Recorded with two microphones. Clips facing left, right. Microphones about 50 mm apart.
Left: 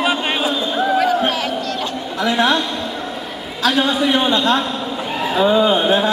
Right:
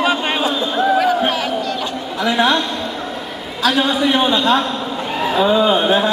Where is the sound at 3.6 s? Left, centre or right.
Centre.